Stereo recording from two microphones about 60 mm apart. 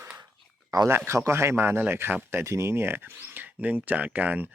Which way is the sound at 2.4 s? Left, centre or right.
Right.